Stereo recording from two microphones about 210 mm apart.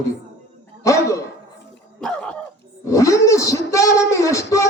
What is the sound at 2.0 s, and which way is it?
Cough, 5° left (ahead or behind).